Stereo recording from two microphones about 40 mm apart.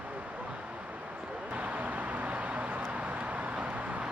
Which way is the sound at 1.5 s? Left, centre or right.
Right.